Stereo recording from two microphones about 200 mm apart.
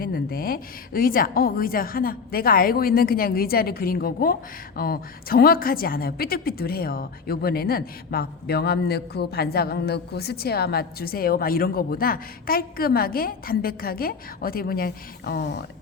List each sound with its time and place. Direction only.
0.0 s a woman's voice: 45° left (ahead or behind)